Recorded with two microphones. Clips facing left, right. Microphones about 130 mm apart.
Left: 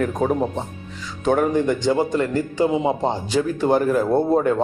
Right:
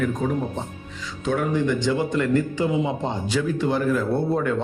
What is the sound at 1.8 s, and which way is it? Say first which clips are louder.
Speech: left 3 dB; 35° left (ahead or behind).